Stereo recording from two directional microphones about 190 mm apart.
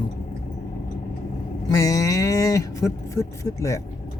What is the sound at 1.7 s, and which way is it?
Speech, 20° left (ahead or behind).